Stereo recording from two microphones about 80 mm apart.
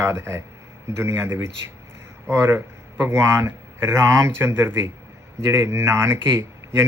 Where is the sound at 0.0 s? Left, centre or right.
Right.